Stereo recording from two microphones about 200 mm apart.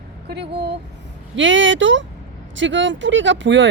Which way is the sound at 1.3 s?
70° right (ahead or behind).